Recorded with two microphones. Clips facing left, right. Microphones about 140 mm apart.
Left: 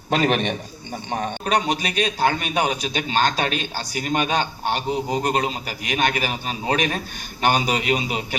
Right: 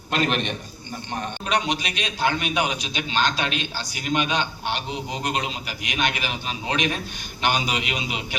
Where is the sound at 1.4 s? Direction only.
40° left (ahead or behind).